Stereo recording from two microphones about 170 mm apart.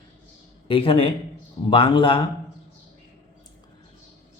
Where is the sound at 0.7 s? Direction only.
30° left (ahead or behind).